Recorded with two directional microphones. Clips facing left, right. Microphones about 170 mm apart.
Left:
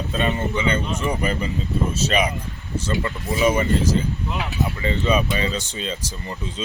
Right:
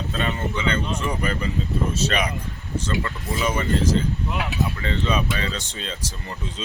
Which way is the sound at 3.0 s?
20° left (ahead or behind).